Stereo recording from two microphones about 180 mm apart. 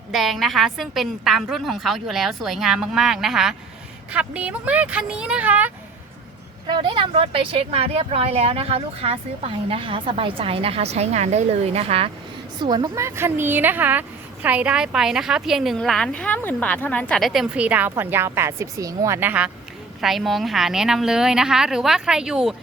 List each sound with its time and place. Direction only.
0.1 s a woman's voice: centre (ahead or behind)
6.7 s speech: 25° right (ahead or behind)
12.5 s a woman's voice: 25° right (ahead or behind); by 22.5 s 5° right (ahead or behind)